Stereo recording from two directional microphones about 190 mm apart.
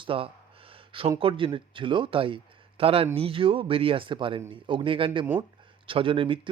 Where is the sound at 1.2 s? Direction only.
25° right (ahead or behind).